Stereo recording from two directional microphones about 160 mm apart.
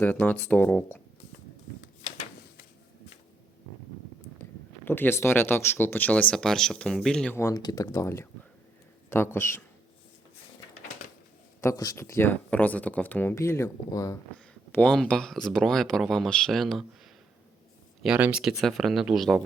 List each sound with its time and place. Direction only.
0.0 s speech: 10° left (ahead or behind)
4.9 s speech: 15° left (ahead or behind)
7.3 s speech: 20° left (ahead or behind)
11.6 s speech: 20° left (ahead or behind)
14.3 s speech: 5° left (ahead or behind)
18.0 s speech: 5° right (ahead or behind)